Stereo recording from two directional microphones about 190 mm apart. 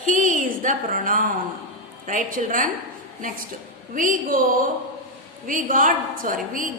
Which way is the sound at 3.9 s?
45° right (ahead or behind).